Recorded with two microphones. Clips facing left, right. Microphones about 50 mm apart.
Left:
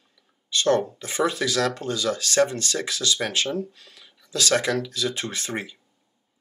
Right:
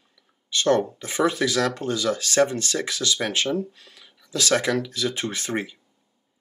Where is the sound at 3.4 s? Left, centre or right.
Centre.